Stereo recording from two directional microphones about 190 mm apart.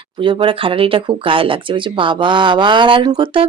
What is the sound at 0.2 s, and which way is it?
Speech, 25° right (ahead or behind).